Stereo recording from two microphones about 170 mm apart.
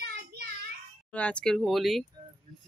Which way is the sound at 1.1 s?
5° left (ahead or behind).